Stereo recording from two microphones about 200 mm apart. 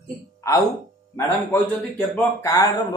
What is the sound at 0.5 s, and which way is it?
A man's voice, 15° left (ahead or behind).